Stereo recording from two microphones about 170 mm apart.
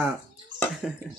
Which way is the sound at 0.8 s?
5° left (ahead or behind).